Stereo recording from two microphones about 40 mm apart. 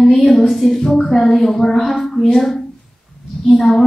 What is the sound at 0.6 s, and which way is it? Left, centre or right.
Speech, centre.